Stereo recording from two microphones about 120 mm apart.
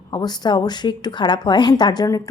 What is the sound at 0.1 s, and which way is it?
A woman's voice, 35° left (ahead or behind).